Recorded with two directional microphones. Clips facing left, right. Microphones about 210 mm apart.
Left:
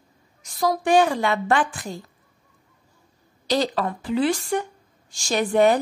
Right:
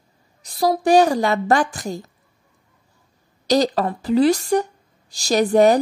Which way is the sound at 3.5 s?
40° right (ahead or behind).